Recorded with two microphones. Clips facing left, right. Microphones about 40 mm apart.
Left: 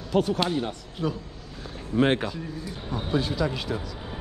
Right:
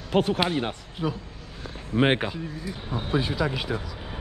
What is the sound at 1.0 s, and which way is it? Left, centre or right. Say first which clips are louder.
Speech: even; centre.